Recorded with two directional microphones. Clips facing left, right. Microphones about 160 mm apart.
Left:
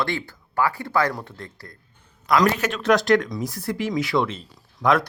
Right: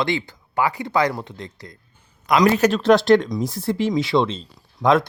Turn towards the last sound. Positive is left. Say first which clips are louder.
# right 3 dB
turn(degrees=-20)  # may be behind; listen again after turning